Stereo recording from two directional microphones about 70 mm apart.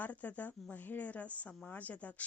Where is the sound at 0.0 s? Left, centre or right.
Left.